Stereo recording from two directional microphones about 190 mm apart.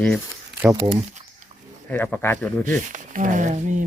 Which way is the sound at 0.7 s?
35° right (ahead or behind).